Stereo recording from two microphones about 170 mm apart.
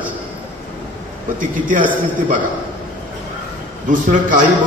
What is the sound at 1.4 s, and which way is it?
Speech, 50° right (ahead or behind).